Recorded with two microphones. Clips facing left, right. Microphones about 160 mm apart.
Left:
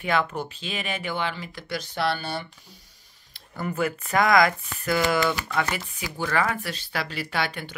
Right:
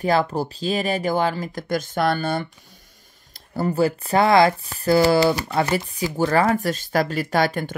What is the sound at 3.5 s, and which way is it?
Speech, 35° right (ahead or behind).